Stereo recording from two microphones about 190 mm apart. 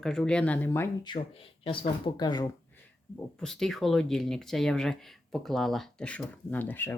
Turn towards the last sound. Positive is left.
turn(degrees=10)  # may be behind; listen again after turning